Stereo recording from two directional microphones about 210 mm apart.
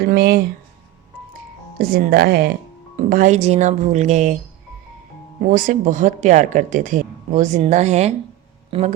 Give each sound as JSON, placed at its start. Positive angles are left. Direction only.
{"t": 0.0, "sound": "speech", "side_deg": -45}
{"t": 1.8, "sound": "speech", "side_deg": -45}
{"t": 5.5, "sound": "speech", "side_deg": -40}